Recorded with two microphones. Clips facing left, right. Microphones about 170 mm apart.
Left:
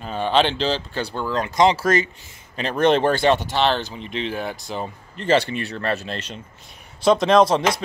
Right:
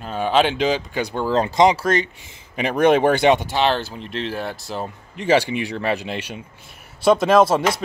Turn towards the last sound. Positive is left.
turn(degrees=-5)  # may be behind; listen again after turning